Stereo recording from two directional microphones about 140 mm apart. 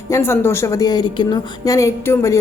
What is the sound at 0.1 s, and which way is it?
A woman's voice, 15° left (ahead or behind).